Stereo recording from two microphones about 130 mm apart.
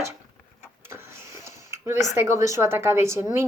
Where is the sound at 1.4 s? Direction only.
20° right (ahead or behind).